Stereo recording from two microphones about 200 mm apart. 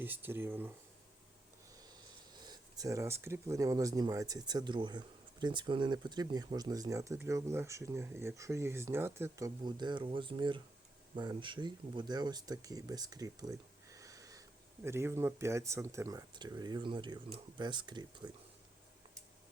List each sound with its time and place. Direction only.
0.0 s speech: 10° right (ahead or behind)
2.3 s speech: 20° right (ahead or behind)